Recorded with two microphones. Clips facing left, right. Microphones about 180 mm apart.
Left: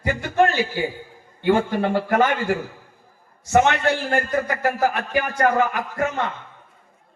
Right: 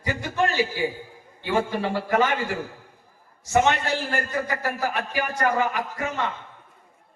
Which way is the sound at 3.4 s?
55° left (ahead or behind).